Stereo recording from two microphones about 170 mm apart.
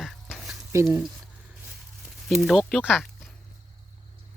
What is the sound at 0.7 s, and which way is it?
Speech, 15° right (ahead or behind).